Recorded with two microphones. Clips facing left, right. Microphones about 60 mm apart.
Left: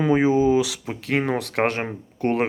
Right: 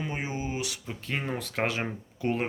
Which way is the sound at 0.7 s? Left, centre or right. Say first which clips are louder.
Left 10 dB; left.